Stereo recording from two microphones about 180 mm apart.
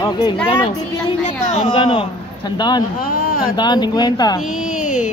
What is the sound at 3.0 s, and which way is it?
Speech, 55° left (ahead or behind).